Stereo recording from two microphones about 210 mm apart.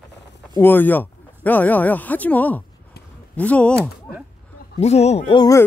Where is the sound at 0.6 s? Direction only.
10° left (ahead or behind).